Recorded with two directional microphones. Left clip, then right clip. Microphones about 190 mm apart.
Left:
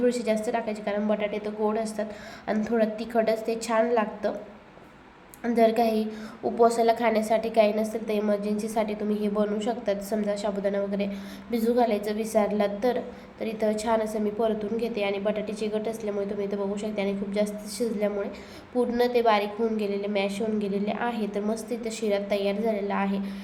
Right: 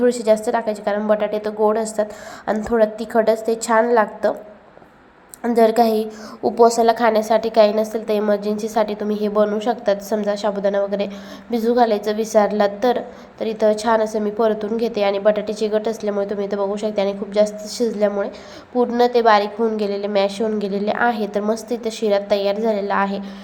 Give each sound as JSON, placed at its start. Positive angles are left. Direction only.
{"t": 0.0, "sound": "a woman's voice", "side_deg": -20}
{"t": 5.4, "sound": "a woman's voice", "side_deg": -20}